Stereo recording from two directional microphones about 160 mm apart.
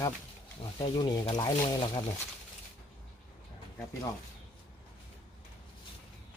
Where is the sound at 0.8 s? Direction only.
30° left (ahead or behind).